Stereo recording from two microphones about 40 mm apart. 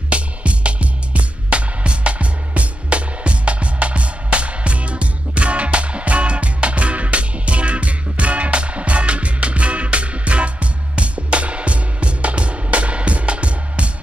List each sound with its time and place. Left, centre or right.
0.1 s music: right